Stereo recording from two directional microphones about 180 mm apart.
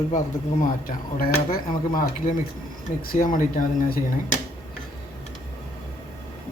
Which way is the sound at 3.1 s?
50° left (ahead or behind).